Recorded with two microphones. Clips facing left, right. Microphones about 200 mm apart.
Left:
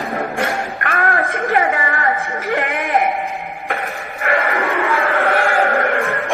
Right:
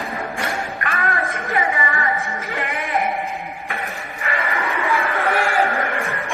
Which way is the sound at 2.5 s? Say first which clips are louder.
Left 9 dB; 55° left (ahead or behind).